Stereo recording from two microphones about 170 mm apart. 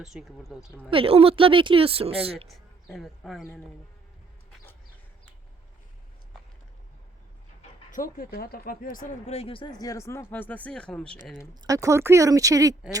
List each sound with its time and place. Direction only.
0.0 s speech: centre (ahead or behind)
0.9 s speech: 35° right (ahead or behind)
2.9 s speech: centre (ahead or behind)
7.9 s speech: 50° left (ahead or behind)
9.3 s speech: 35° left (ahead or behind); by 11.2 s 5° left (ahead or behind)
11.6 s speech: 20° right (ahead or behind)